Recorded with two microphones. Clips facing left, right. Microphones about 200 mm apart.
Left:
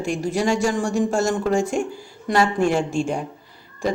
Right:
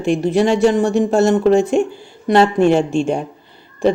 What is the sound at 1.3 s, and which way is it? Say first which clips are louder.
Speech: right 8 dB; 25° right (ahead or behind).